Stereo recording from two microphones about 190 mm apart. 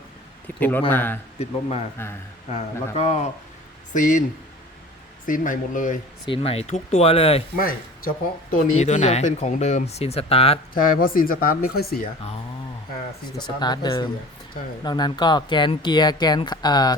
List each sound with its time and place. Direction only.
0.4 s a man's voice: 10° left (ahead or behind)
2.5 s speech: 35° left (ahead or behind)
5.2 s speech: 45° left (ahead or behind)
6.2 s speech: 30° left (ahead or behind)
7.6 s speech: 50° left (ahead or behind)
8.8 s speech: 35° left (ahead or behind)
10.8 s speech: 45° left (ahead or behind)
13.4 s speech: 20° left (ahead or behind)